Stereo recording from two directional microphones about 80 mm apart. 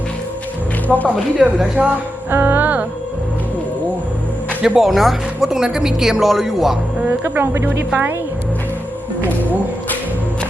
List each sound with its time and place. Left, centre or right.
0.9 s speech: centre
1.4 s speech: centre
1.8 s music: centre
2.3 s speech: right
4.6 s speech: centre
7.1 s speech: right